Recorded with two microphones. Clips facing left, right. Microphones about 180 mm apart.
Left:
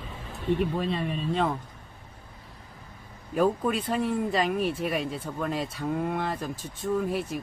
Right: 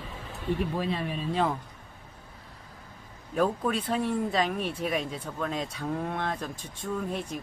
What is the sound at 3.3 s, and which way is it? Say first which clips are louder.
Speech: left 2 dB; 5° left (ahead or behind).